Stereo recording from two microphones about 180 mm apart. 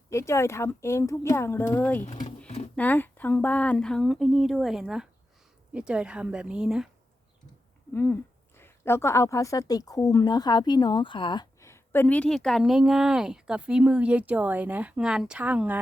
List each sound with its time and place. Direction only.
0.1 s a woman's voice: 15° left (ahead or behind)
2.0 s speech: 40° left (ahead or behind)
2.7 s speech: 10° left (ahead or behind)
7.9 s a woman's voice: 15° left (ahead or behind); by 15.8 s 10° right (ahead or behind)